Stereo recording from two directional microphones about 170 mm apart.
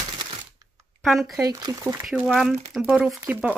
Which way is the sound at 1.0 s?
Centre (ahead or behind).